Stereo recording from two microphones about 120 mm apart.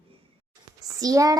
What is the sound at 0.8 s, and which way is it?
Speech, 30° right (ahead or behind).